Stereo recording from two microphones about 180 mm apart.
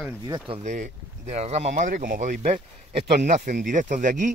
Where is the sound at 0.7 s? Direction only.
40° right (ahead or behind).